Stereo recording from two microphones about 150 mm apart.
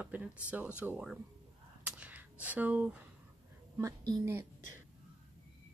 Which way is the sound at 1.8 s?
10° right (ahead or behind).